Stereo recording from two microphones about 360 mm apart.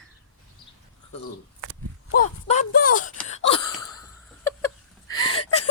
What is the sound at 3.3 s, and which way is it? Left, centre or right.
Gasp, centre.